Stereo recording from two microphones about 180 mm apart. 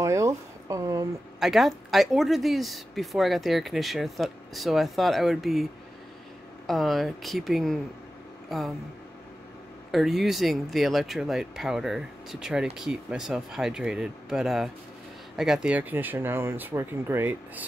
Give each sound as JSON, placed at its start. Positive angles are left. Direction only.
{"t": 0.0, "sound": "a sound", "side_deg": -15}
{"t": 1.4, "sound": "speech", "side_deg": 0}
{"t": 6.7, "sound": "speech", "side_deg": 0}
{"t": 9.8, "sound": "speech", "side_deg": 0}